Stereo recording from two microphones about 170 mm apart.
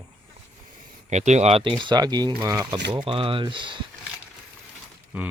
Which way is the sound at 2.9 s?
30° right (ahead or behind).